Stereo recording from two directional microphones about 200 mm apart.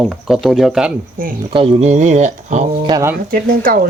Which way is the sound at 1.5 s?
30° right (ahead or behind).